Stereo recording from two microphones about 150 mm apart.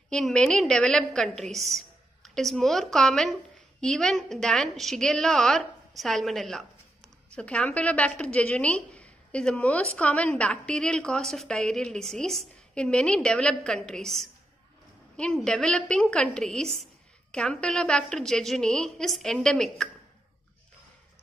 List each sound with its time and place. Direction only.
0.1 s a woman's voice: 5° left (ahead or behind)